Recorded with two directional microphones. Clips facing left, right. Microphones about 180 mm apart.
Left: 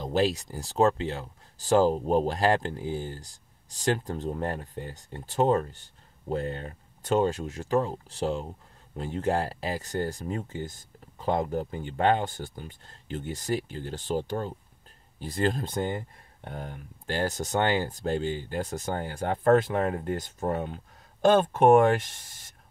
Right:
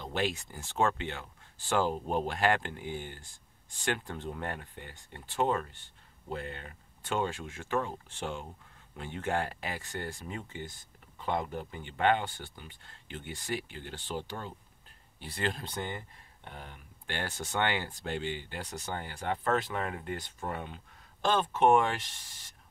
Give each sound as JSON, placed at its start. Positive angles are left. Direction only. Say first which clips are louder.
{"t": 0.0, "sound": "speech", "louder": "left 7 dB", "side_deg": 35}